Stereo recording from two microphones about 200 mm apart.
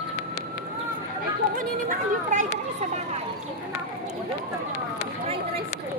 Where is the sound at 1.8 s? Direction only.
40° right (ahead or behind).